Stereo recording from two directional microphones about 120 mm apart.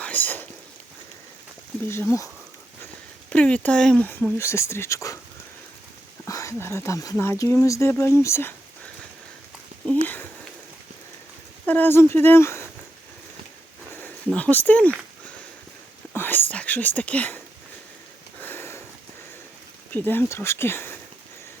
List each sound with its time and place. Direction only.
0.0 s speech: 15° left (ahead or behind)
3.2 s speech: 10° left (ahead or behind); by 5.2 s 25° left (ahead or behind)
6.2 s speech: 25° left (ahead or behind)
9.8 s a sound: 10° left (ahead or behind)
11.6 s speech: 15° left (ahead or behind)
14.3 s speech: 10° left (ahead or behind)
16.1 s whispering: 15° left (ahead or behind)
18.3 s sniff: 15° left (ahead or behind)
19.9 s speech: 15° left (ahead or behind)